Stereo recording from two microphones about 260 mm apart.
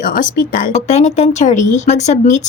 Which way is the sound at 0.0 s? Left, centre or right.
Left.